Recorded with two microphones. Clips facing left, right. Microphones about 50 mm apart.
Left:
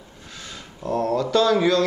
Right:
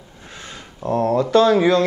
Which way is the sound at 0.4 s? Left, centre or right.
Right.